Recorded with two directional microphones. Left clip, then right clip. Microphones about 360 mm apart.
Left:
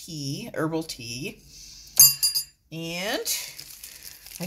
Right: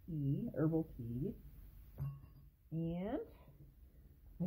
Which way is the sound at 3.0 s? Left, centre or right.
Centre.